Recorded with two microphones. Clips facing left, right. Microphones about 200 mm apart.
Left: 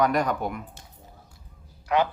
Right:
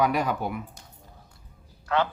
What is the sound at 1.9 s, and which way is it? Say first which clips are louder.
Speech: left 2 dB; 15° left (ahead or behind).